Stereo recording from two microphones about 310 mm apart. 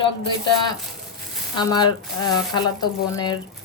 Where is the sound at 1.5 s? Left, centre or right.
Centre.